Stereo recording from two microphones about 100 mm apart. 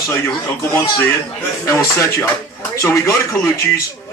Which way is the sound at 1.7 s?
30° left (ahead or behind).